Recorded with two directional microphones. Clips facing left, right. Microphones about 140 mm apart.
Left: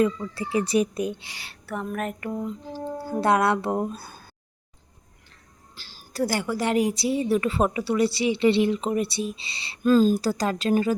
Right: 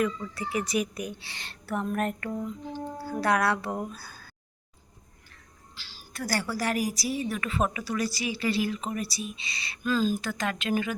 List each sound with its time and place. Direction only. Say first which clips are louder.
0.0 s a woman's voice: left 5 dB; 25° left (ahead or behind); by 2.1 s centre (ahead or behind)
2.2 s a sound: left 3 dB; 20° left (ahead or behind)
3.0 s a woman's voice: left 4 dB; 25° left (ahead or behind)
5.8 s a sound: left 1 dB; 50° left (ahead or behind)
6.1 s a woman's voice: left 5 dB; 20° left (ahead or behind)
9.8 s speech: left 8 dB; 45° left (ahead or behind)